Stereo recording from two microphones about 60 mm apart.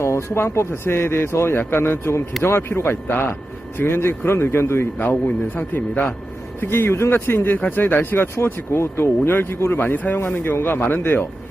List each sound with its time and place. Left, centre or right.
0.0 s speech: left